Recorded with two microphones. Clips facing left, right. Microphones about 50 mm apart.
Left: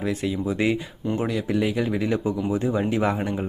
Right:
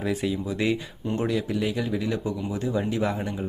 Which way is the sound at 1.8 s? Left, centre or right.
Left.